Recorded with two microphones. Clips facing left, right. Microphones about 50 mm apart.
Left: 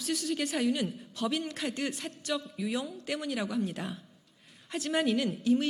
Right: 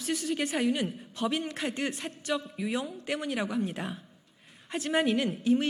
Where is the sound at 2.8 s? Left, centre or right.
Right.